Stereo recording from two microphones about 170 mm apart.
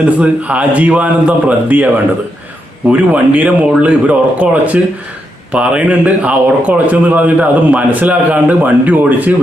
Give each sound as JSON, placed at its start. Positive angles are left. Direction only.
{"t": 0.2, "sound": "speech", "side_deg": -10}
{"t": 2.9, "sound": "speech", "side_deg": -10}